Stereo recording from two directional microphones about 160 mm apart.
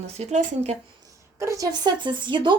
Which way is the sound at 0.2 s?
45° right (ahead or behind).